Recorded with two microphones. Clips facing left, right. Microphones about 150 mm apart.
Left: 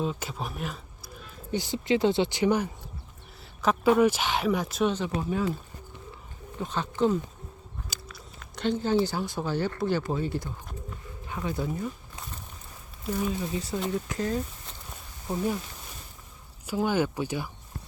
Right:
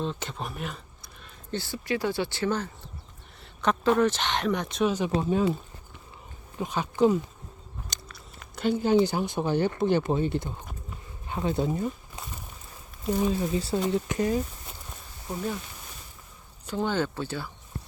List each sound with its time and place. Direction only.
0.0 s a sound: 5° left (ahead or behind)
1.5 s speech: 20° left (ahead or behind); by 4.9 s centre (ahead or behind)
6.6 s speech: 10° right (ahead or behind)
7.9 s speech: 5° left (ahead or behind); by 11.9 s 25° right (ahead or behind)
13.1 s speech: 25° right (ahead or behind)
14.3 s speech: 10° right (ahead or behind)
15.3 s speech: 10° left (ahead or behind)
16.6 s speech: 10° left (ahead or behind)